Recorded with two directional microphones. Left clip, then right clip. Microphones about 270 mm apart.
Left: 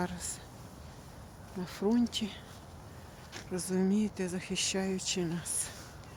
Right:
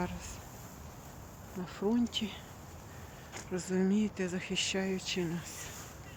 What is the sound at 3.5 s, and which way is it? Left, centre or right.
Speech, centre.